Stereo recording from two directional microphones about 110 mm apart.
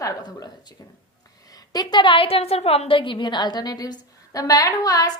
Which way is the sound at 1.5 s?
40° left (ahead or behind).